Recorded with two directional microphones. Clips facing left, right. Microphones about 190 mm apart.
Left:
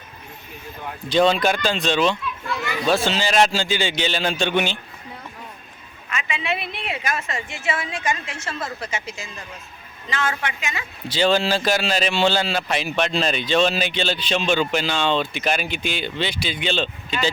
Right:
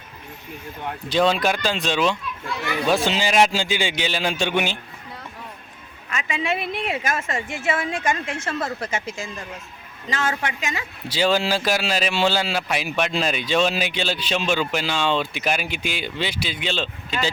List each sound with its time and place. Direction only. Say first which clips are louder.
1.1 s speech: left 2 dB; 5° right (ahead or behind)
6.1 s a woman's voice: right 2 dB; 40° right (ahead or behind)
11.1 s speech: left 1 dB; 10° right (ahead or behind)